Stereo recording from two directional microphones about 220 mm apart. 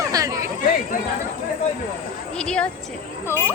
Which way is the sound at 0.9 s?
40° left (ahead or behind).